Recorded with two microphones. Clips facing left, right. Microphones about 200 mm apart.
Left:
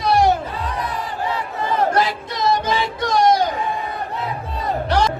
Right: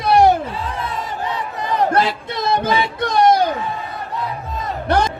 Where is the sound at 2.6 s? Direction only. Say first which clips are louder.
Right 2 dB; 60° right (ahead or behind).